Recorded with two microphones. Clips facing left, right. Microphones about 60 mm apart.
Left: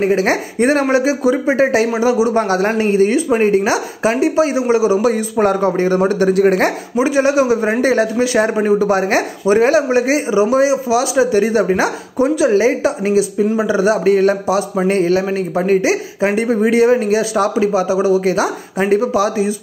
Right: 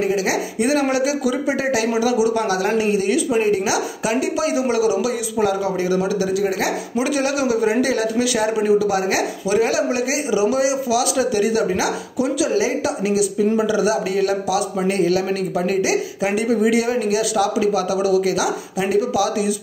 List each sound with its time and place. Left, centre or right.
0.0 s speech: left
5.0 s speech: left
7.0 s speech: left